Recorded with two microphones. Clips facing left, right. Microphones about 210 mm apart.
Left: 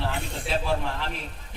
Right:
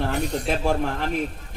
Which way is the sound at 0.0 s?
40° right (ahead or behind).